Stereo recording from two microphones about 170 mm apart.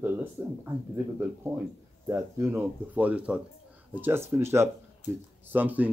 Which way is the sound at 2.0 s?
15° right (ahead or behind).